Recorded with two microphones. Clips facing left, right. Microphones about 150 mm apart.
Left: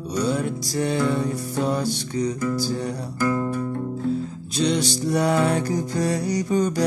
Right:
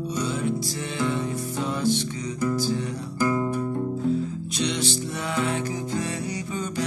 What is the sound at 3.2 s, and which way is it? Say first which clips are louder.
Music: left 1 dB; 10° right (ahead or behind).